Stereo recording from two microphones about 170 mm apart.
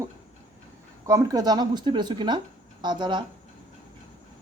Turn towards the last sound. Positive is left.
turn(degrees=-25)  # may be behind; listen again after turning